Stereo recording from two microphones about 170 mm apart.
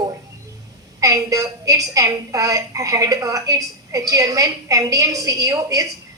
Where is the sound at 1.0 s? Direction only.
20° right (ahead or behind).